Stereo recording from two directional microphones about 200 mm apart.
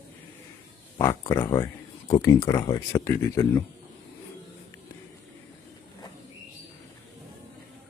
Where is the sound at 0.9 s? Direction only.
15° left (ahead or behind).